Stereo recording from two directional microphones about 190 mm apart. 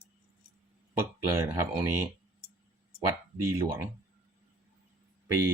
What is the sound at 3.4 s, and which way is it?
Speech, 15° right (ahead or behind).